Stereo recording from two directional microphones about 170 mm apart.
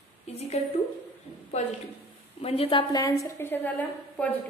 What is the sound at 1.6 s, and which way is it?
A woman's voice, 40° left (ahead or behind).